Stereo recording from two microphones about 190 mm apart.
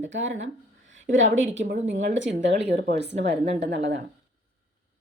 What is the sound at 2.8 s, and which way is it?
Speech, 60° right (ahead or behind).